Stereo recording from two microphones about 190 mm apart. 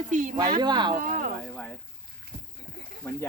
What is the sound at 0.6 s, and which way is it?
Speech, 25° right (ahead or behind).